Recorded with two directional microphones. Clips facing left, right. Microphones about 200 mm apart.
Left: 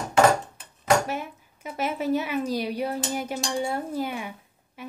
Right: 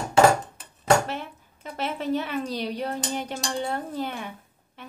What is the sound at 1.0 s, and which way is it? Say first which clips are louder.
Speech: left 2 dB; 10° left (ahead or behind).